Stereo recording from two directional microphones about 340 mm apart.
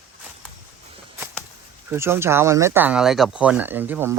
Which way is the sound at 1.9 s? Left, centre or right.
Centre.